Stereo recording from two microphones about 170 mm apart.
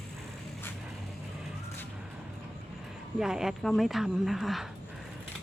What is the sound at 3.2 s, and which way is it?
Speech, 5° right (ahead or behind).